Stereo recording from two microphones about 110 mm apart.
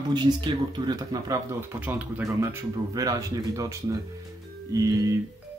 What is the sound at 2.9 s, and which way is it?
Speech, 35° right (ahead or behind).